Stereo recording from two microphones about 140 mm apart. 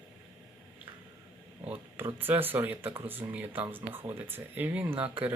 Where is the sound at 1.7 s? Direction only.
15° right (ahead or behind).